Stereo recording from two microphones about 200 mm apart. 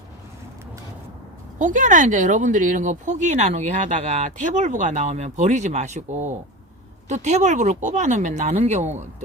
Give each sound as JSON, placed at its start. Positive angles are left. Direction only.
{"t": 1.5, "sound": "speech", "side_deg": -40}